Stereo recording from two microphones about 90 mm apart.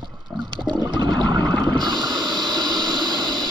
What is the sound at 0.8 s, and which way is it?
Toilet flush, 50° right (ahead or behind).